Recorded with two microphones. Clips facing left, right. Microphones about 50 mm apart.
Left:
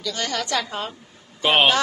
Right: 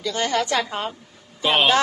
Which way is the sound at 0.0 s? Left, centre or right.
Right.